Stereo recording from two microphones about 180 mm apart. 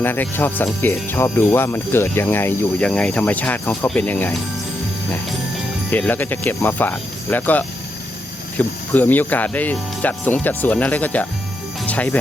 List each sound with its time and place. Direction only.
0.0 s speech: 10° left (ahead or behind)
5.9 s speech: 10° left (ahead or behind)